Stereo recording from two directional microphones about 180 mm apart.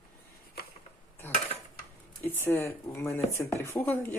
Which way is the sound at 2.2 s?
10° left (ahead or behind).